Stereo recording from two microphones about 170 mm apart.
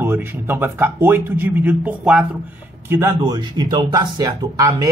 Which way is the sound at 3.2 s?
25° right (ahead or behind).